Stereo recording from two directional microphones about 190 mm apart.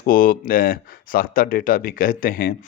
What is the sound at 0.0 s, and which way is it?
Speech, 45° left (ahead or behind).